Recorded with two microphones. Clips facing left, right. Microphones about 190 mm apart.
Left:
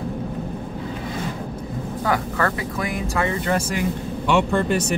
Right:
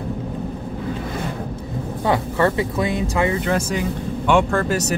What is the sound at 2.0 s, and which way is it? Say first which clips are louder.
Speech: right 4 dB; 25° right (ahead or behind).